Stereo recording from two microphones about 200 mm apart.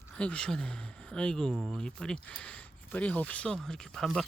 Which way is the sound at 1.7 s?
5° left (ahead or behind).